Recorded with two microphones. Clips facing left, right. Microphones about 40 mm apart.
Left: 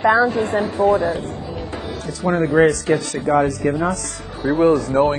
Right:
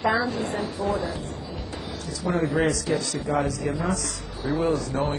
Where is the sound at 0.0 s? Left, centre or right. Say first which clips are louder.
Left 8 dB; left.